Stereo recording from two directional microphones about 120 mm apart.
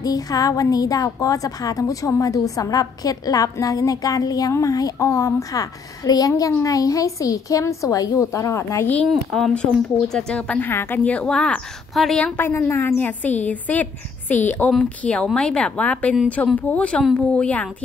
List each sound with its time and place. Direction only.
0.0 s a woman's voice: 30° left (ahead or behind)
9.1 s speech: 5° left (ahead or behind)
12.4 s speech: 20° left (ahead or behind)